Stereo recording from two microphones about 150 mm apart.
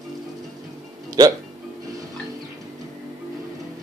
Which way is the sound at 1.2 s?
25° right (ahead or behind).